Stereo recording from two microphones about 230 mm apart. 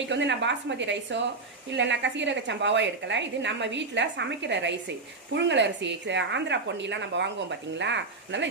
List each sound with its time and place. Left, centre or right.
0.0 s speech: right